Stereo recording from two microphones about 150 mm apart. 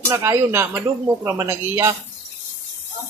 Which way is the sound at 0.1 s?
20° right (ahead or behind).